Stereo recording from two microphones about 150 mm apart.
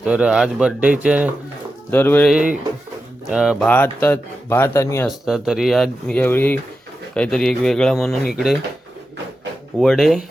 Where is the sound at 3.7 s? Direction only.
10° left (ahead or behind).